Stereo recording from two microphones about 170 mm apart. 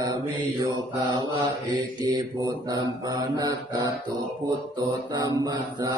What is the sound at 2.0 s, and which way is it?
Mantra, 25° right (ahead or behind).